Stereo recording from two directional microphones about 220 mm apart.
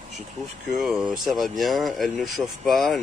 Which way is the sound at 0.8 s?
5° right (ahead or behind).